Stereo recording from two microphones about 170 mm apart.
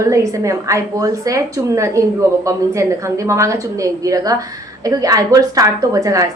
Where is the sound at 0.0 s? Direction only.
20° right (ahead or behind).